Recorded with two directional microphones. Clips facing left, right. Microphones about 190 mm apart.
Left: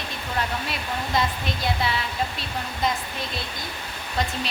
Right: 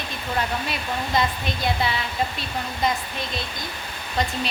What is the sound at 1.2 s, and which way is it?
Speech, centre (ahead or behind).